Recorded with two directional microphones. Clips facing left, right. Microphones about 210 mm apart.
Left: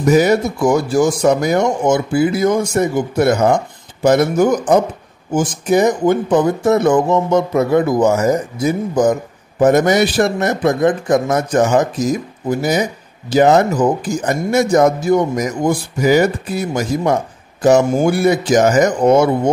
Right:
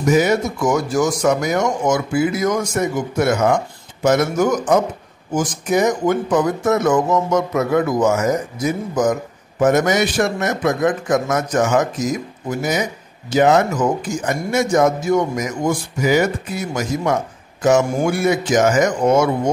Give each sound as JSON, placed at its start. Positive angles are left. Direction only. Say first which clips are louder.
{"t": 0.0, "sound": "a man's voice", "louder": "left 3 dB", "side_deg": 35}